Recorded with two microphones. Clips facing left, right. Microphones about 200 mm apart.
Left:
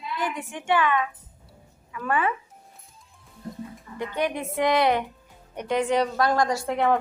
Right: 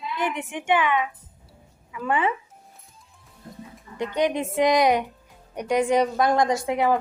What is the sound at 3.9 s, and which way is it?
A woman's voice, 20° right (ahead or behind).